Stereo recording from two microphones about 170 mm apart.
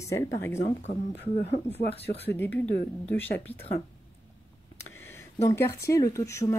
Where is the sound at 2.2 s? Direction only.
10° left (ahead or behind).